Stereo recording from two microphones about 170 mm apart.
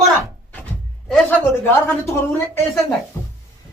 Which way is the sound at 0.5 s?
5° left (ahead or behind).